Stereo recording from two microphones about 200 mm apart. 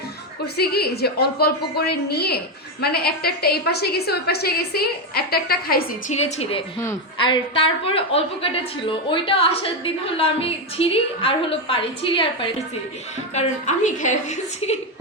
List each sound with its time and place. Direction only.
0.5 s a woman's voice: 50° left (ahead or behind)
6.1 s a woman's voice: 30° left (ahead or behind)
13.3 s a woman's voice: 35° left (ahead or behind)